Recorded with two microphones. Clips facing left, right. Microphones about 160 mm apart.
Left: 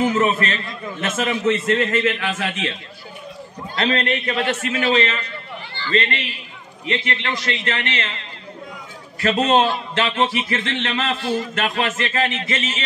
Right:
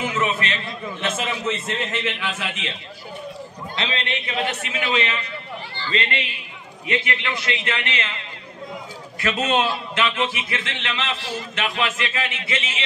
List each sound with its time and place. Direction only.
0.0 s a man's voice: 45° left (ahead or behind)
3.7 s a man's voice: 45° left (ahead or behind)
6.9 s a man's voice: 35° left (ahead or behind)